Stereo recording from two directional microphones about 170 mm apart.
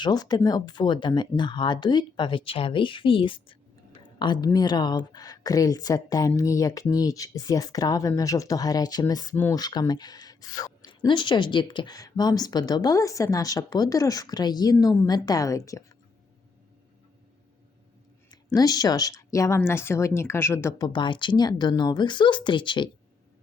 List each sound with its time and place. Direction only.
0.0 s speech: 25° left (ahead or behind)
18.3 s speech: 20° left (ahead or behind)